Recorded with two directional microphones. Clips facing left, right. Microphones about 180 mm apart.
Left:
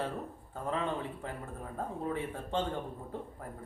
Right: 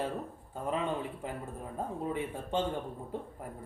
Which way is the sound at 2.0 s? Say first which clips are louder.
Right 1 dB; 10° right (ahead or behind).